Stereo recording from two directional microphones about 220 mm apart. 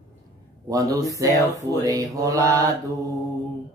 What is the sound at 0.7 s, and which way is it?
Mantra, 15° right (ahead or behind).